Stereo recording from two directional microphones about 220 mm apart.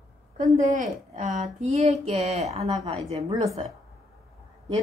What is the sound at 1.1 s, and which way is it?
Speech, 30° right (ahead or behind).